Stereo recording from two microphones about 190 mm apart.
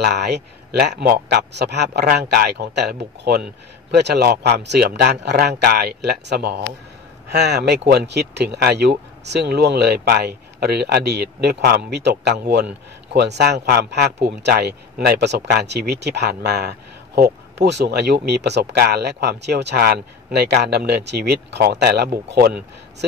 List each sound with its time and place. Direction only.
0.0 s speech: 60° right (ahead or behind)